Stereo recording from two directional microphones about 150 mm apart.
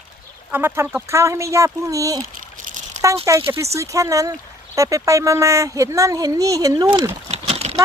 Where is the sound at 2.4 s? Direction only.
60° right (ahead or behind).